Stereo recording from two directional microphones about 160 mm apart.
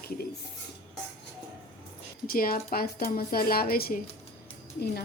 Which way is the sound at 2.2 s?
65° left (ahead or behind).